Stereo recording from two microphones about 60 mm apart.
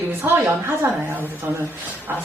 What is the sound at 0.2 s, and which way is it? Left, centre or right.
Speech, right.